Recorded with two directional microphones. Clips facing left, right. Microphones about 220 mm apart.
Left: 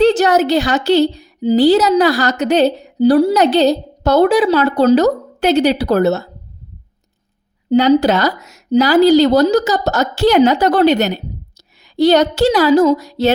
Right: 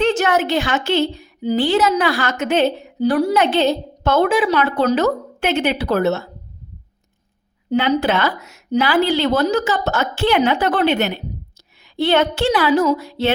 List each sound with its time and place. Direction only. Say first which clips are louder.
0.0 s a woman's voice: left 6 dB; 35° left (ahead or behind)
7.7 s a woman's voice: left 6 dB; 40° left (ahead or behind)